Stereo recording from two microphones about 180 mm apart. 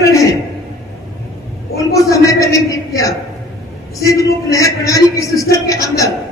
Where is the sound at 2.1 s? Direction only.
20° left (ahead or behind).